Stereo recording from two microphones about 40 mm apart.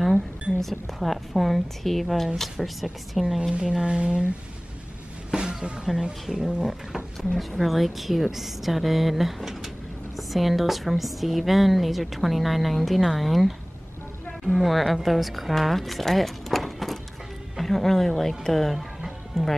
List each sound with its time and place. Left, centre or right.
0.0 s a woman's voice: centre
3.8 s speech: right
5.3 s music: centre
6.3 s speech: centre
6.6 s a woman's voice: centre
18.8 s music: centre
19.4 s speech: centre